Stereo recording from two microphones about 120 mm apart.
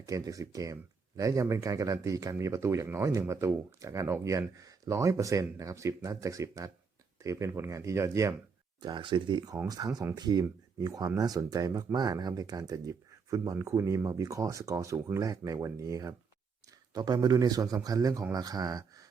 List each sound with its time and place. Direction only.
0.0 s speech: 30° right (ahead or behind)
8.8 s speech: 40° right (ahead or behind)